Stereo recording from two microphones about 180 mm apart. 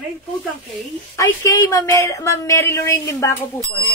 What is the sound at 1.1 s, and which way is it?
Speech, 20° left (ahead or behind).